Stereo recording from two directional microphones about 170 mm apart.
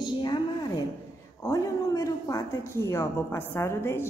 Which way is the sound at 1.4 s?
20° left (ahead or behind).